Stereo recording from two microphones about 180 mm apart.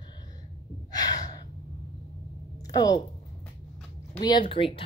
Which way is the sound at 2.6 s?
20° left (ahead or behind).